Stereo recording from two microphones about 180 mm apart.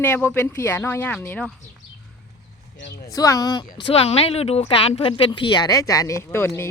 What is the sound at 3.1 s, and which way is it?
A woman's voice, 20° left (ahead or behind).